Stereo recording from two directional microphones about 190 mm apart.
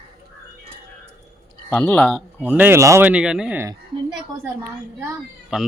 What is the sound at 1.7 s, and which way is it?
Speech, 10° left (ahead or behind).